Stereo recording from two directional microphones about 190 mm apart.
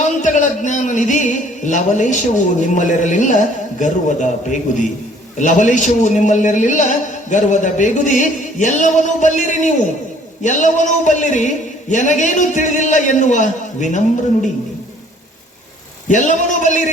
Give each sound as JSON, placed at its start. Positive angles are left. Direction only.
{"t": 0.2, "sound": "a man's voice", "side_deg": 40}
{"t": 16.0, "sound": "a man's voice", "side_deg": 40}